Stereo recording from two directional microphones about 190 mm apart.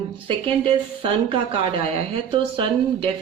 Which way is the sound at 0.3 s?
25° right (ahead or behind).